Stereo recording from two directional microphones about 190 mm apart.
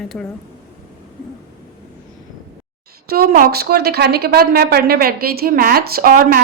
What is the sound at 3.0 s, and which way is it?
Speech, 50° right (ahead or behind).